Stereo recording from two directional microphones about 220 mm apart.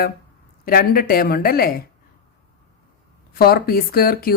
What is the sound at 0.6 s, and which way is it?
Speech, 40° left (ahead or behind).